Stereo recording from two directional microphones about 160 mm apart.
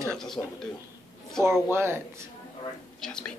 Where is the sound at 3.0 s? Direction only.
5° left (ahead or behind).